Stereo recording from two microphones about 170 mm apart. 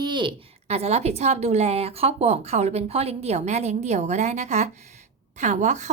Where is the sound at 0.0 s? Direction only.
25° right (ahead or behind).